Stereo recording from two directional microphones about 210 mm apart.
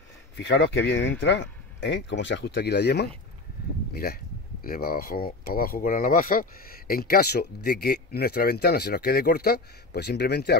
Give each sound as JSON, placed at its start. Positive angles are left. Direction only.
{"t": 0.4, "sound": "speech", "side_deg": 60}